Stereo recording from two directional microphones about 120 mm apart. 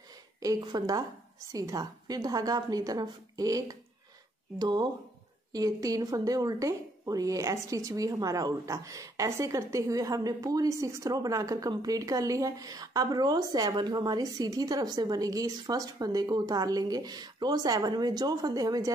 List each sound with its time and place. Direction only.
0.4 s speech: 30° right (ahead or behind)